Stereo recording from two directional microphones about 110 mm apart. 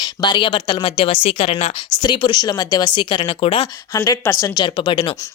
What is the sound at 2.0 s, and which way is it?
A woman's voice, 45° left (ahead or behind).